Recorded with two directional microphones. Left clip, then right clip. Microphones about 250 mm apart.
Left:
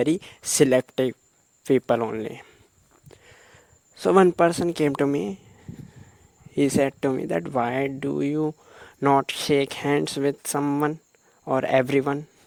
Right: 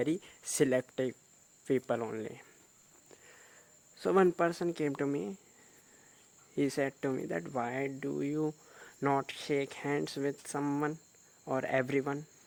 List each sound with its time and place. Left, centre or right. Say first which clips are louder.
0.0 s speech: left 10 dB; left
3.1 s a sound: left 7 dB; left
6.5 s speech: left 11 dB; left